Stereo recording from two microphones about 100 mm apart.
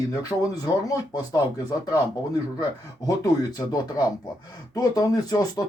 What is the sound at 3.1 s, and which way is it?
Speech, 40° left (ahead or behind).